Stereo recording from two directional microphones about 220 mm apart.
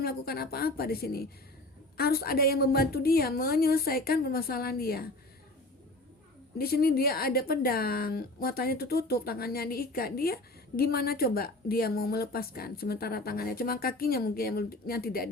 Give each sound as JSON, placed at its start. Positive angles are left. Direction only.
{"t": 0.0, "sound": "speech", "side_deg": 45}
{"t": 6.6, "sound": "speech", "side_deg": 45}